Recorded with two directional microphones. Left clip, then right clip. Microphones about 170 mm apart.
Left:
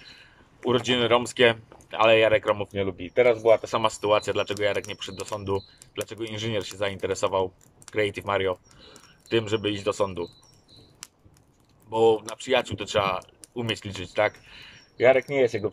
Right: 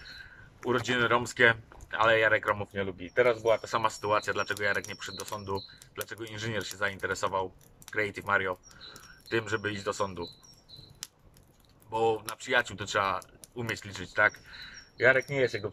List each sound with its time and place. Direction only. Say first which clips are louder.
0.6 s speech: left 5 dB; 15° left (ahead or behind)
11.9 s speech: left 7 dB; 15° left (ahead or behind)